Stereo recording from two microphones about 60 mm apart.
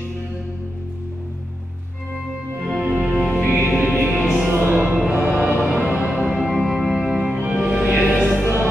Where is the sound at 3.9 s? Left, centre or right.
Centre.